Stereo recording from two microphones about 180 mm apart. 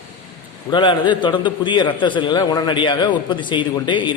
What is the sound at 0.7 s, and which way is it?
A man's voice, 25° left (ahead or behind).